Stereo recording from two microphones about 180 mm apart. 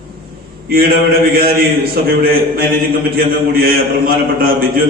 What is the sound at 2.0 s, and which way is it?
A man's voice, 55° right (ahead or behind).